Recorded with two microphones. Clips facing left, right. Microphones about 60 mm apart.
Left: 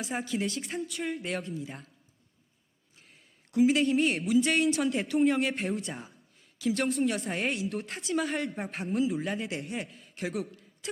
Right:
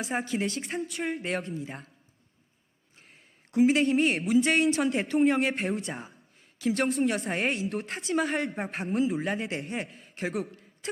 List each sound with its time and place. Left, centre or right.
0.2 s speech: right
3.5 s speech: right
5.0 s speech: right
5.3 s speech: right
10.2 s speech: right